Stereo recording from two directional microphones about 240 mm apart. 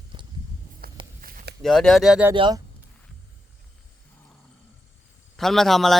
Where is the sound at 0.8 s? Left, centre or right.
Right.